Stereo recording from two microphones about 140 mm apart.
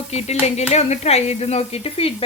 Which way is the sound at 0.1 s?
45° left (ahead or behind).